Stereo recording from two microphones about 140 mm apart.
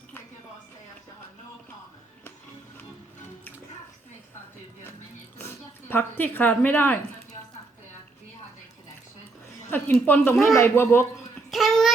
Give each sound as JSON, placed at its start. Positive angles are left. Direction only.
{"t": 5.4, "sound": "speech", "side_deg": 15}
{"t": 9.6, "sound": "a woman's voice", "side_deg": 15}
{"t": 11.5, "sound": "child singing", "side_deg": 0}